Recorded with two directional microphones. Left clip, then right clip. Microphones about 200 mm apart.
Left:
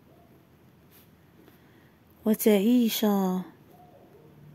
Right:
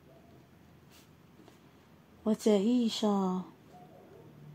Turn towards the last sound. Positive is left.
turn(degrees=35)  # may be behind; listen again after turning